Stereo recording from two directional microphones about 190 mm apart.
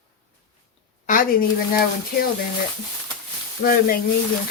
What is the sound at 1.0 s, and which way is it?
Speech, 45° left (ahead or behind).